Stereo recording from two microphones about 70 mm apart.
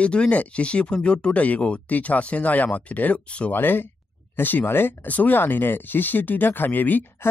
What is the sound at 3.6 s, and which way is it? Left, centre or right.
Speech, left.